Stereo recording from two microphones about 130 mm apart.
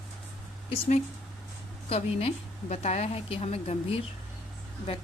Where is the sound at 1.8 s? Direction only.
50° left (ahead or behind).